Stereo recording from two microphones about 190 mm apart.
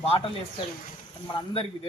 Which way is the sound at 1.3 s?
25° left (ahead or behind).